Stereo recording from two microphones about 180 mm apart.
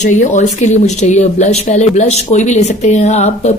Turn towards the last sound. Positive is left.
turn(degrees=35)  # may be behind; listen again after turning